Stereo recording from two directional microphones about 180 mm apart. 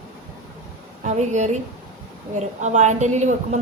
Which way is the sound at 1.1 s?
40° right (ahead or behind).